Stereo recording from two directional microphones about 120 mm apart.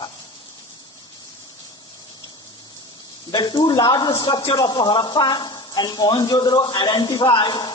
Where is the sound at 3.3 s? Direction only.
35° left (ahead or behind).